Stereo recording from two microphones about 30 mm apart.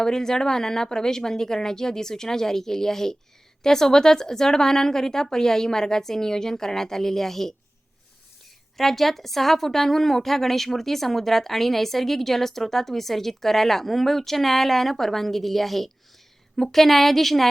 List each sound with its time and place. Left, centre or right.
0.0 s a woman's voice: centre
8.8 s a woman's voice: centre